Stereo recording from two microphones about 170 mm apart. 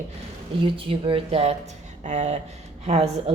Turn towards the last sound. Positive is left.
turn(degrees=-40)  # may be behind; listen again after turning